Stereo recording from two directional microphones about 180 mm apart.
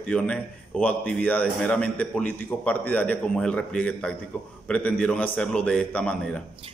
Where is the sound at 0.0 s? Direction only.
5° left (ahead or behind).